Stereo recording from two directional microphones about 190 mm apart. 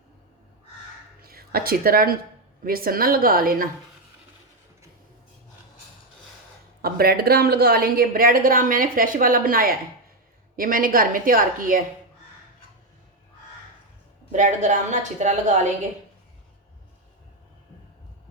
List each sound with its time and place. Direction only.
1.2 s a woman's voice: 50° right (ahead or behind)
6.8 s a woman's voice: 55° right (ahead or behind)
14.3 s a woman's voice: 40° right (ahead or behind)